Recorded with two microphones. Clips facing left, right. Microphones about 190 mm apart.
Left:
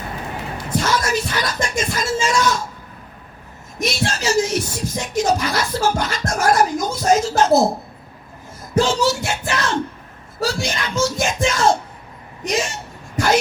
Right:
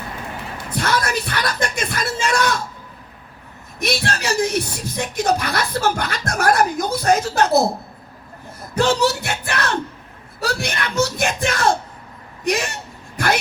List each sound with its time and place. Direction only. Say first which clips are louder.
0.7 s speech: left 1 dB; 60° right (ahead or behind)
3.8 s speech: even; 60° right (ahead or behind)
8.7 s speech: even; 60° right (ahead or behind)